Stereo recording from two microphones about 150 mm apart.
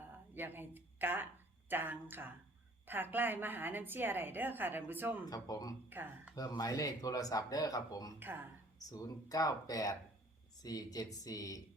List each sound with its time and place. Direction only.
0.0 s a woman's voice: 15° right (ahead or behind)
5.2 s speech: 25° left (ahead or behind)
5.9 s a woman's voice: 15° right (ahead or behind)
6.3 s speech: 25° left (ahead or behind)
8.2 s a woman's voice: 15° right (ahead or behind)
8.9 s speech: 25° left (ahead or behind)